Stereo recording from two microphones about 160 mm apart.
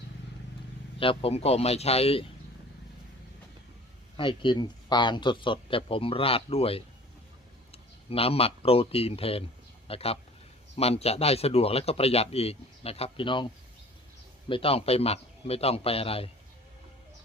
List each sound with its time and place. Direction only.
0.9 s speech: 35° left (ahead or behind)
4.2 s speech: 30° left (ahead or behind)